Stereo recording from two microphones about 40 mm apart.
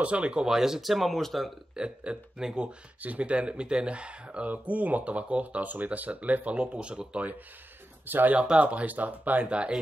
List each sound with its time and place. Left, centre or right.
0.0 s speech: right
0.5 s speech: centre
1.8 s speech: right
3.0 s speech: right
4.5 s speech: right
8.1 s speech: right
8.5 s speech: right